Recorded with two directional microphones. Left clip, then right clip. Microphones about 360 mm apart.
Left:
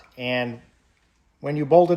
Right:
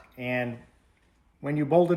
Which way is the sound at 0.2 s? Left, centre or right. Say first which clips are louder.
Left 4 dB; centre.